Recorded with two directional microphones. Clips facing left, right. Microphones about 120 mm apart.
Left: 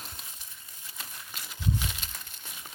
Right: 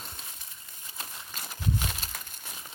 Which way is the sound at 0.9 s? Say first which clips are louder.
Right 2 dB; 45° right (ahead or behind).